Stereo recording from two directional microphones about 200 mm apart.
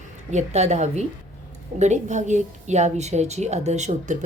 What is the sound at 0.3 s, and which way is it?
A woman's voice, 35° right (ahead or behind).